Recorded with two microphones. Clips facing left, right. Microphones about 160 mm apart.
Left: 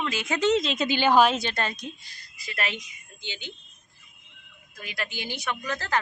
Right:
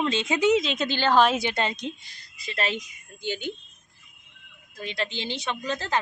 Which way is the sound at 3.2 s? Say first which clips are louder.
Right 9 dB; 45° right (ahead or behind).